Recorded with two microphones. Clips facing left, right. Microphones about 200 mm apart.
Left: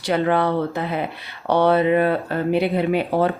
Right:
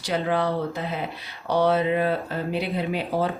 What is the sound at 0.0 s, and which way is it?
Speech, 60° left (ahead or behind).